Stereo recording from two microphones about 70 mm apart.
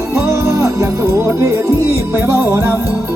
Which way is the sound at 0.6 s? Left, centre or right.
Right.